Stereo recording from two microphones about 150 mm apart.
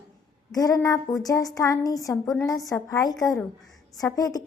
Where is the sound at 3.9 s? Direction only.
25° left (ahead or behind).